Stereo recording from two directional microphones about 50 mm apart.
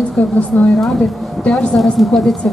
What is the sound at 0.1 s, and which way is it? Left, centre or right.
A woman's voice, centre.